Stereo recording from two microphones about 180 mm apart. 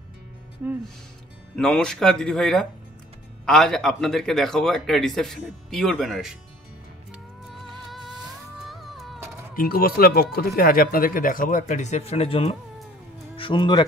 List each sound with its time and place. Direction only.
0.6 s speech: 10° right (ahead or behind)
1.6 s a man's voice: 5° left (ahead or behind)
8.6 s music: centre (ahead or behind)
9.6 s speech: 55° left (ahead or behind); by 13.8 s 25° left (ahead or behind)